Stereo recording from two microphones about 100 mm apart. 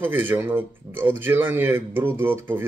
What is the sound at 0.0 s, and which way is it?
A man's voice, 20° right (ahead or behind).